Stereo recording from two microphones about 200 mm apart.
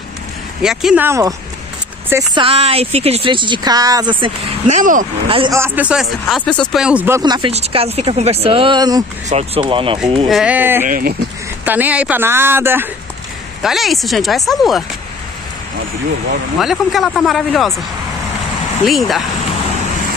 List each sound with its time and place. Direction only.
0.6 s speech: 5° right (ahead or behind)
2.3 s speech: 30° right (ahead or behind)
5.3 s speech: 25° right (ahead or behind)
5.6 s speech: 5° right (ahead or behind)
9.3 s speech: 30° right (ahead or behind)
10.2 s speech: 5° right (ahead or behind)
10.9 s speech: 45° right (ahead or behind)
11.6 s speech: 10° right (ahead or behind)
16.5 s speech: centre (ahead or behind)
18.9 s speech: centre (ahead or behind)